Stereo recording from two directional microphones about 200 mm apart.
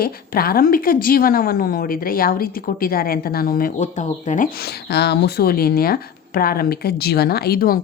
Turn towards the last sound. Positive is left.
turn(degrees=50)  # may be behind; listen again after turning